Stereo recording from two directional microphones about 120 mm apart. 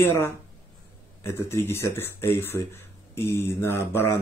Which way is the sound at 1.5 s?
20° left (ahead or behind).